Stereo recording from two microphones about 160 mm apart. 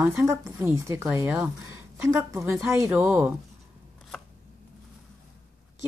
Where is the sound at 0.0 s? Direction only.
15° right (ahead or behind).